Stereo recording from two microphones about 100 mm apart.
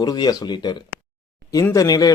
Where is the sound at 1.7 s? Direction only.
40° left (ahead or behind).